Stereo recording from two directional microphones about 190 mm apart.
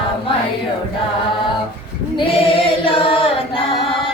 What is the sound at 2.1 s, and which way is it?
Singing, 30° left (ahead or behind).